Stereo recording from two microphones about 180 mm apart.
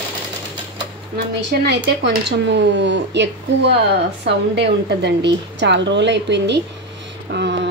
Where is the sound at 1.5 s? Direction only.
70° right (ahead or behind).